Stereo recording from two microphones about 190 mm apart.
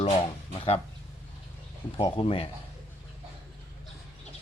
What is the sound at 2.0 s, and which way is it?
Speech, 30° left (ahead or behind).